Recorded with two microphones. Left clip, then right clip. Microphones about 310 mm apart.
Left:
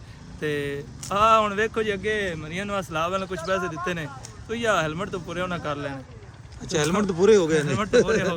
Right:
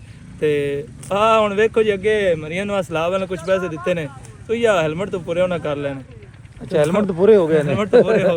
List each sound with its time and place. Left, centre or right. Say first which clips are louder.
0.3 s speech: right 9 dB; centre
3.6 s speech: right 3 dB; left
3.8 s speech: right 8 dB; centre